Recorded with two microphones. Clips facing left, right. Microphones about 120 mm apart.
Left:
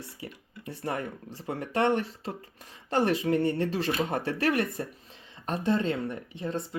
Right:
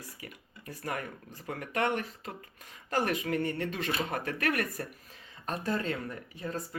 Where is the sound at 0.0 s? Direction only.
30° left (ahead or behind).